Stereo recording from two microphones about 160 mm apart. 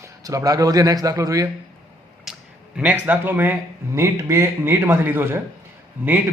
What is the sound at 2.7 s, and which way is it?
A man's voice, 10° right (ahead or behind).